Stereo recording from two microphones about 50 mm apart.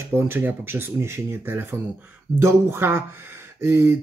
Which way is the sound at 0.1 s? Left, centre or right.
Right.